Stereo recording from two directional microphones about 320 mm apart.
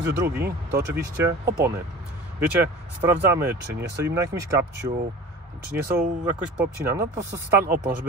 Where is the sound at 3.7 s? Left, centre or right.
Right.